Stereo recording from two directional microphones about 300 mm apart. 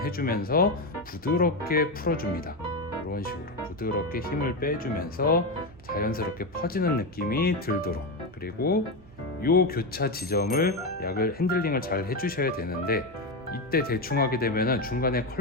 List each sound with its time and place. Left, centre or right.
0.0 s speech: left